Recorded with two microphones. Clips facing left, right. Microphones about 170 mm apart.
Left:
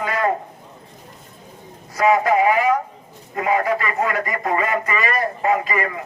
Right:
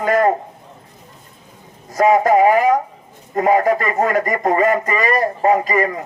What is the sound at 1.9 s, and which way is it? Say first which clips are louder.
A man's voice: right 4 dB; 45° right (ahead or behind).